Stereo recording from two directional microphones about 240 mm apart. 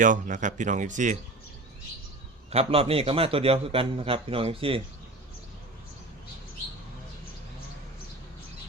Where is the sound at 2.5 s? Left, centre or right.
Right.